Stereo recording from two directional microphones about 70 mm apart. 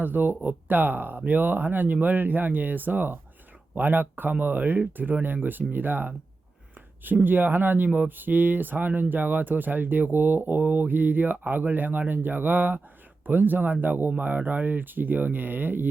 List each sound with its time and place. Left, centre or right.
0.0 s speech: right